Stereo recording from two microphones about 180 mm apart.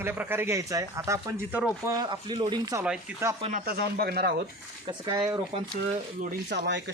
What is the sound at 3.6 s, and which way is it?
Speech, 60° right (ahead or behind).